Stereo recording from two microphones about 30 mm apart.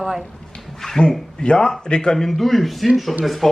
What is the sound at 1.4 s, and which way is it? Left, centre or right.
Speech, left.